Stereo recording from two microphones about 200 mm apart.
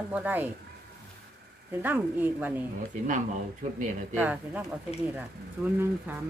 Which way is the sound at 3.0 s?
40° right (ahead or behind).